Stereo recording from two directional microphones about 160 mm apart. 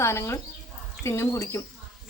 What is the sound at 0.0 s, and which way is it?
A woman's voice, 15° left (ahead or behind).